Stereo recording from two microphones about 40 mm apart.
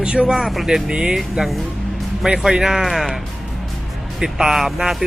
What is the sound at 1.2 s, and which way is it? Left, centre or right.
Speech, centre.